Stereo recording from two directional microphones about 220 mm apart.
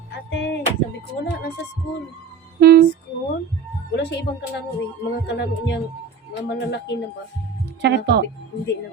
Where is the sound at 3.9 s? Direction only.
50° left (ahead or behind).